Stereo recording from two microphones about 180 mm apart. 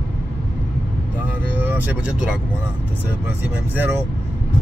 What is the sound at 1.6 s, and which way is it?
Speech, 10° right (ahead or behind).